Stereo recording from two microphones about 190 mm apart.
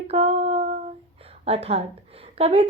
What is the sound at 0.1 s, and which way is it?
Humming, 30° right (ahead or behind).